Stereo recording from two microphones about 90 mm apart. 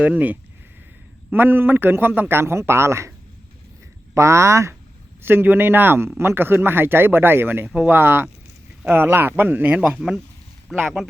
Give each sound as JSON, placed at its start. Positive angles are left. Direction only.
{"t": 0.0, "sound": "a man's voice", "side_deg": -20}
{"t": 4.1, "sound": "a man's voice", "side_deg": -30}